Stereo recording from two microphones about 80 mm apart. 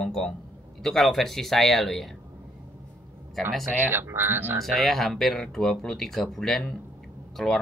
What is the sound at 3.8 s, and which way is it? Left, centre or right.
Speech, right.